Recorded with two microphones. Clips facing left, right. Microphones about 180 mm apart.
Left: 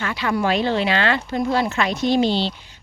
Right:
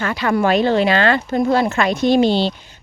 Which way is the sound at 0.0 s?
45° right (ahead or behind).